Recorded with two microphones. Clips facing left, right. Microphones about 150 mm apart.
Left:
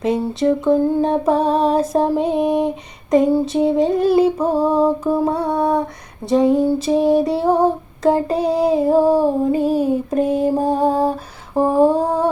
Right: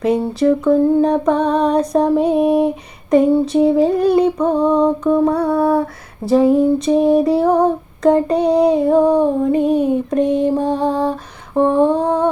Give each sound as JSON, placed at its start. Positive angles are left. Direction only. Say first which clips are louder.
{"t": 0.0, "sound": "child singing", "louder": "right 3 dB", "side_deg": 0}
{"t": 5.1, "sound": "a sound", "louder": "right 4 dB", "side_deg": 25}
{"t": 6.2, "sound": "child singing", "louder": "right 2 dB", "side_deg": 0}
{"t": 11.6, "sound": "humming", "louder": "right 1 dB", "side_deg": 35}
{"t": 11.9, "sound": "humming", "louder": "right 1 dB", "side_deg": 10}